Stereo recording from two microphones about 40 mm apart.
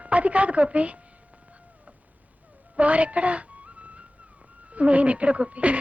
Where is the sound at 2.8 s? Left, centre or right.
Right.